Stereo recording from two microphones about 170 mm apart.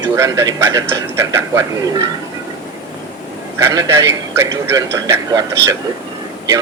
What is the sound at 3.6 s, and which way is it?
A man's voice, 20° right (ahead or behind).